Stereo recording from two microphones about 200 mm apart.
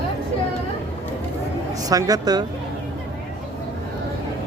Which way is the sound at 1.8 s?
20° right (ahead or behind).